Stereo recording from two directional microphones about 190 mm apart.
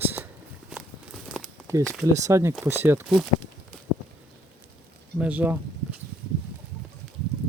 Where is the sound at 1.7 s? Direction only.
15° right (ahead or behind).